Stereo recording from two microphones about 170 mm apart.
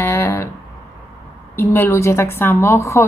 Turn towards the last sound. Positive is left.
turn(degrees=15)  # may be behind; listen again after turning